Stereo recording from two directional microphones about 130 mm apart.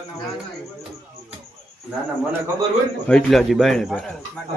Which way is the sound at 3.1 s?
5° left (ahead or behind).